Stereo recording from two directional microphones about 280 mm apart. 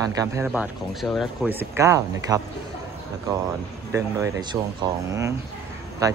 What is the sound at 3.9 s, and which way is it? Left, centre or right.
Speech, centre.